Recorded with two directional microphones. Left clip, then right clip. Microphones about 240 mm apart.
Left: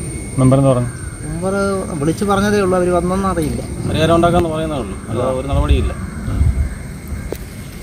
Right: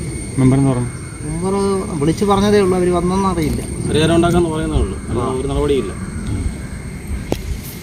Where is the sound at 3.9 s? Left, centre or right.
Centre.